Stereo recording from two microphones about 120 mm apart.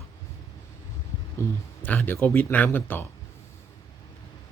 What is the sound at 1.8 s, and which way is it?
Speech, 15° left (ahead or behind).